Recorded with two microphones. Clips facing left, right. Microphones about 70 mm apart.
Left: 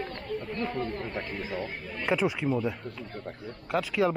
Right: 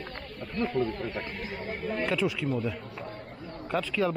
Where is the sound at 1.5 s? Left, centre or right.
Right.